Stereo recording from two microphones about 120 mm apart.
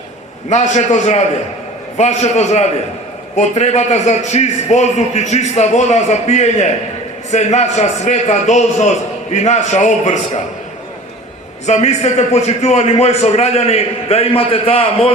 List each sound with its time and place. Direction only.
0.5 s a man's voice: 75° left (ahead or behind)
11.6 s a man's voice: 70° left (ahead or behind); by 15.1 s 50° left (ahead or behind)